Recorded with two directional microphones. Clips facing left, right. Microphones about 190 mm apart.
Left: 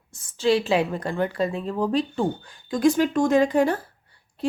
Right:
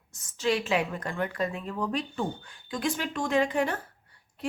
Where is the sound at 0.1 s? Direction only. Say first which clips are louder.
Left 7 dB; 30° left (ahead or behind).